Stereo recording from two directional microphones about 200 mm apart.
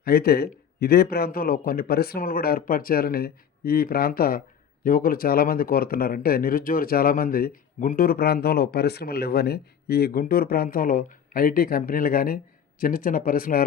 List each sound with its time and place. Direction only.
0.0 s a man's voice: 50° left (ahead or behind)